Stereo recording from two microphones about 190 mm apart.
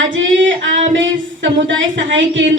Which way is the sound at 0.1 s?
80° right.